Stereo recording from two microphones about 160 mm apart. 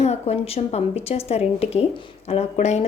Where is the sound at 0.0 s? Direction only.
40° left (ahead or behind).